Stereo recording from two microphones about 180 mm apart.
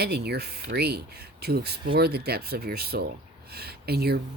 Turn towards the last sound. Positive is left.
turn(degrees=-60)  # may be behind; listen again after turning